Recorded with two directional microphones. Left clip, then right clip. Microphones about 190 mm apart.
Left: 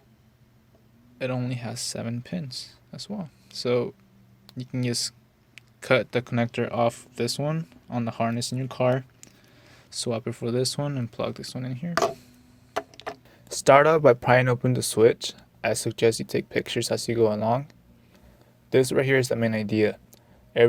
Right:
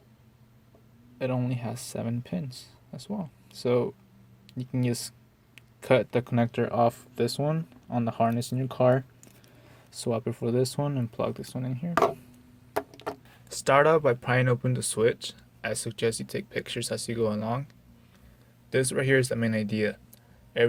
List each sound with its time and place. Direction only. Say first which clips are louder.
1.2 s speech: left 1 dB; centre (ahead or behind)
13.5 s speech: left 4 dB; 35° left (ahead or behind)
18.7 s speech: left 4 dB; 35° left (ahead or behind)